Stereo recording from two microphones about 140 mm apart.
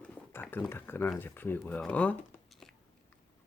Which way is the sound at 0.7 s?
15° left (ahead or behind).